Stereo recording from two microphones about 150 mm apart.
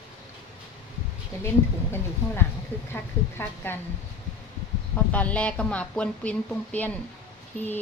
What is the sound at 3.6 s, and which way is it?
Speech, 15° left (ahead or behind).